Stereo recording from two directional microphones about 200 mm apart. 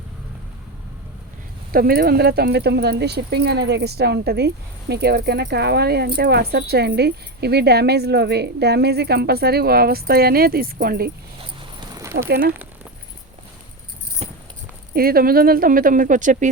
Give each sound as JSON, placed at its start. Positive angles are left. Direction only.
{"t": 1.7, "sound": "speech", "side_deg": -45}
{"t": 11.3, "sound": "dog", "side_deg": -20}
{"t": 12.3, "sound": "speech", "side_deg": -50}
{"t": 14.2, "sound": "keys jangling", "side_deg": -35}
{"t": 14.9, "sound": "speech", "side_deg": -50}